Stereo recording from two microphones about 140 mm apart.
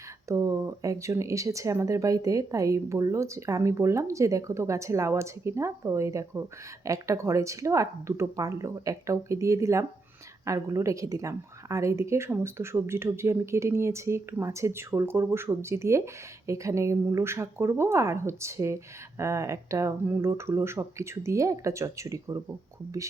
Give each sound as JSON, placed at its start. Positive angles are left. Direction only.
{"t": 0.3, "sound": "speech", "side_deg": -20}